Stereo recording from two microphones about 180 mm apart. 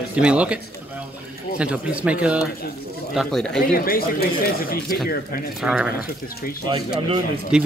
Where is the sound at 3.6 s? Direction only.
55° left (ahead or behind).